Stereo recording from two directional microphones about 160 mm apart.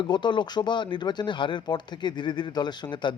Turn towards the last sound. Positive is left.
turn(degrees=30)  # may be behind; listen again after turning